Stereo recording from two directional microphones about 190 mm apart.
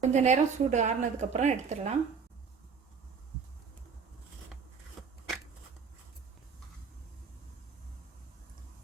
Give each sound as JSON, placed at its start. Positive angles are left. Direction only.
{"t": 0.0, "sound": "a woman's voice", "side_deg": -35}